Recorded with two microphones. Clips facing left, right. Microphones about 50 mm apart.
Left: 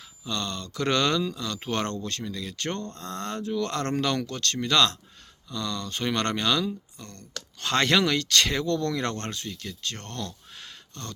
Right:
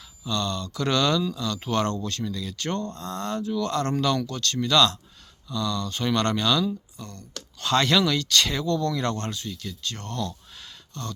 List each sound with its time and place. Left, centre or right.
0.3 s speech: left
6.9 s speech: left